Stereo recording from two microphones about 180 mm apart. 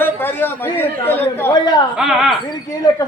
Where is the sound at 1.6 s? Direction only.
25° left (ahead or behind).